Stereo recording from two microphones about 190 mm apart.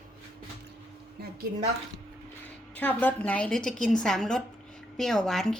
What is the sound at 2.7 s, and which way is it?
A woman's voice, 10° left (ahead or behind).